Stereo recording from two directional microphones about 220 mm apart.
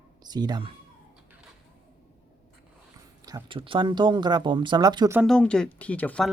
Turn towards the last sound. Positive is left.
turn(degrees=5)  # may be behind; listen again after turning